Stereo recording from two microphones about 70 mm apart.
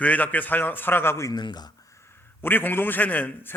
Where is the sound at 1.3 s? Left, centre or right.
Left.